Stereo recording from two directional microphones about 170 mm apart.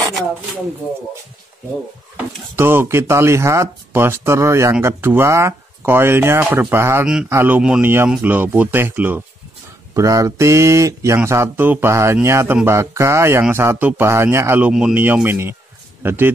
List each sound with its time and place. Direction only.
2.1 s speech: 15° right (ahead or behind)